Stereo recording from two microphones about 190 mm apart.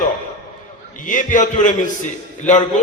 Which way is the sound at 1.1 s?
45° left (ahead or behind).